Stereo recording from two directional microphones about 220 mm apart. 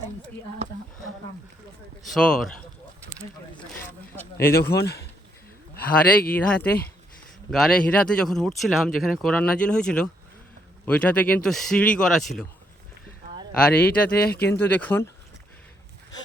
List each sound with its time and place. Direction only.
2.0 s speech: 5° left (ahead or behind)
4.1 s speech: 10° left (ahead or behind)
4.8 s speech: 50° left (ahead or behind)
6.3 s speech: 5° left (ahead or behind)
13.6 s speech: 5° left (ahead or behind)
14.3 s speech: 45° left (ahead or behind)
14.6 s speech: 10° left (ahead or behind)